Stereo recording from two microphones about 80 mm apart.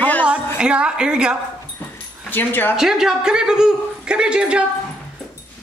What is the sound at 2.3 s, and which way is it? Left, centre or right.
Speech, left.